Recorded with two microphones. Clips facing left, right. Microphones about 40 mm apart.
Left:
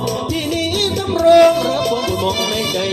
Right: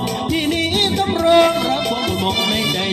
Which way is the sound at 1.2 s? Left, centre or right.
Right.